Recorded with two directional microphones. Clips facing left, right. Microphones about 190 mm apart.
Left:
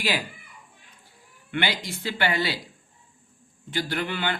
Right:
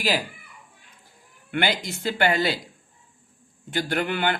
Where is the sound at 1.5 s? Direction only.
50° right (ahead or behind).